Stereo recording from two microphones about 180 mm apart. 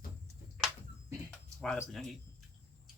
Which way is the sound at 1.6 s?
Centre (ahead or behind).